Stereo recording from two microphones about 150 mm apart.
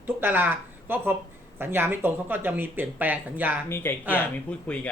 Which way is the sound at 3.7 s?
15° left (ahead or behind).